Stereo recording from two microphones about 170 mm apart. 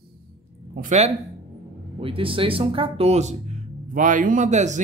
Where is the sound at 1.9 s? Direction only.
30° right (ahead or behind).